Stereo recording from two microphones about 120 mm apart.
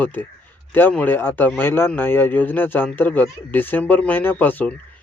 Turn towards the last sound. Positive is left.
turn(degrees=15)  # may be behind; listen again after turning